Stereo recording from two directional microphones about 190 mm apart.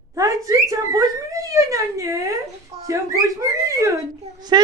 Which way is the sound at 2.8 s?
15° right (ahead or behind).